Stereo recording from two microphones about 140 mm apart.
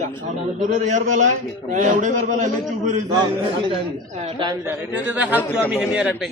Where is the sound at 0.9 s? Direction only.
60° right (ahead or behind).